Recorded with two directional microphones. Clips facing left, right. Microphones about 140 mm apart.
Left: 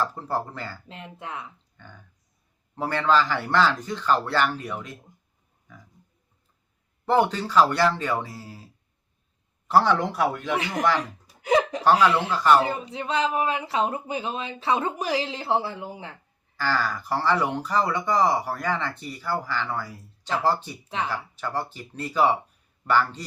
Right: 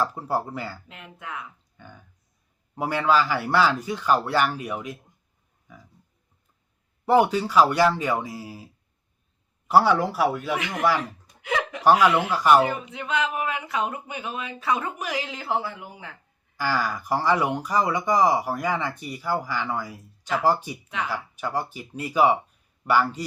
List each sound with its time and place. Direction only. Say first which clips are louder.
0.0 s speech: right 2 dB; 10° right (ahead or behind)
0.9 s speech: left 2 dB; 30° left (ahead or behind)
1.8 s speech: right 2 dB; 10° right (ahead or behind)
5.7 s pig: right 1 dB; 10° right (ahead or behind)
7.0 s speech: right 2 dB; 10° right (ahead or behind)
11.4 s speech: left 6 dB; 35° left (ahead or behind)
11.8 s speech: right 6 dB; 10° right (ahead or behind)
12.6 s speech: even; 30° left (ahead or behind)
16.6 s speech: even; 10° right (ahead or behind)